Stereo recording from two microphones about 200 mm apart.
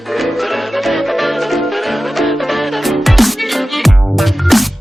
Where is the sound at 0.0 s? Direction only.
Centre (ahead or behind).